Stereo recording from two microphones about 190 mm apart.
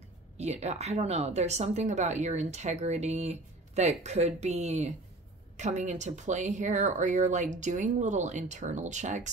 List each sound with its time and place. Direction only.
0.4 s a woman's voice: 35° right (ahead or behind)